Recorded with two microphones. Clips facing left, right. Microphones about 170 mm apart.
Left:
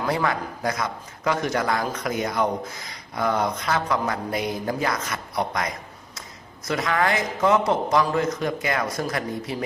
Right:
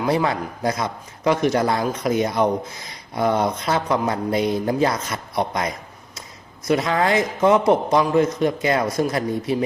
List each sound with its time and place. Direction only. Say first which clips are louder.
0.0 s a man's voice: right 4 dB; 20° right (ahead or behind)